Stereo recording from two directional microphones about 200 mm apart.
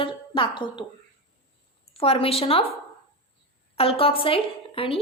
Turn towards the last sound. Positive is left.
turn(degrees=25)  # may be behind; listen again after turning